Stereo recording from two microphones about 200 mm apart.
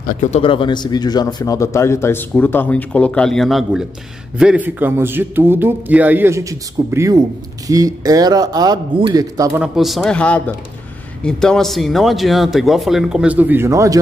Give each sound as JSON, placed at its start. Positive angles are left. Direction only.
{"t": 0.0, "sound": "speech", "side_deg": 40}
{"t": 0.4, "sound": "a man's voice", "side_deg": 25}
{"t": 9.6, "sound": "speech", "side_deg": 0}